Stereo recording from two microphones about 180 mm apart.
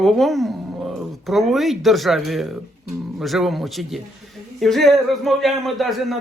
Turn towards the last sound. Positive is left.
turn(degrees=0)  # may be behind; listen again after turning